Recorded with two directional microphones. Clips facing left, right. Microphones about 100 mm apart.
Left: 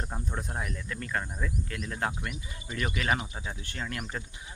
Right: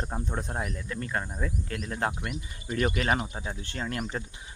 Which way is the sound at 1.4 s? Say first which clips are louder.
Right 2 dB; 40° right (ahead or behind).